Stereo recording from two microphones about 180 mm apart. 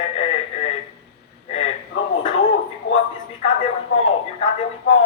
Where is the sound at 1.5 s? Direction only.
35° left (ahead or behind).